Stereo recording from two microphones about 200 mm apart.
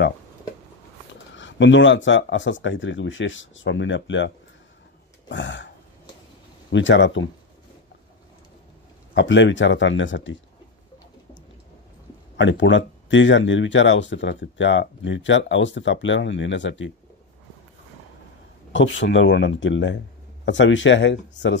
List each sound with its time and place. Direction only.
1.3 s speech: 65° left (ahead or behind)
5.3 s speech: 65° left (ahead or behind)
6.7 s speech: 65° left (ahead or behind)
9.1 s speech: 65° left (ahead or behind)
12.4 s speech: 65° left (ahead or behind)
18.7 s speech: 65° left (ahead or behind)